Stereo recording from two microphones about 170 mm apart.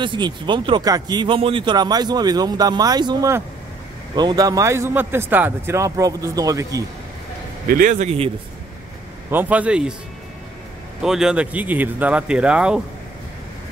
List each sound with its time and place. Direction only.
0.0 s speech: 30° right (ahead or behind)
7.6 s a man's voice: 55° right (ahead or behind)
9.3 s speech: 10° right (ahead or behind)
11.0 s speech: 5° right (ahead or behind)